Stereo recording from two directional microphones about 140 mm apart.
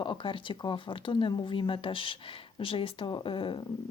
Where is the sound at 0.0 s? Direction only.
35° left (ahead or behind).